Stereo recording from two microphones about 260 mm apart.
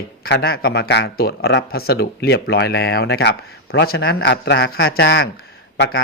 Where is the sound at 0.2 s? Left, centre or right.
Left.